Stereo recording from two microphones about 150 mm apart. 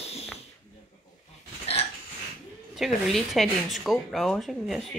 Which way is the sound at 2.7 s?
Centre (ahead or behind).